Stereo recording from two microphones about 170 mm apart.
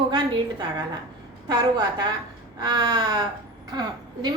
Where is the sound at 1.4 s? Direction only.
25° right (ahead or behind).